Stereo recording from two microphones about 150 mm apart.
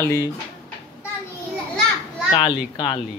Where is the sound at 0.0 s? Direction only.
20° left (ahead or behind).